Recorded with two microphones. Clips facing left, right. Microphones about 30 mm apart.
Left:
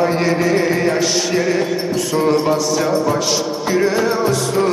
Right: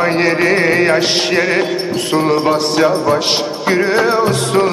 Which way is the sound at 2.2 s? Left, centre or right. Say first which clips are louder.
Right 2 dB; right.